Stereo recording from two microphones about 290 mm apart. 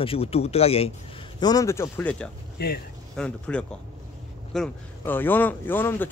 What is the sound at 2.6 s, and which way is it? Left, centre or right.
Speech, left.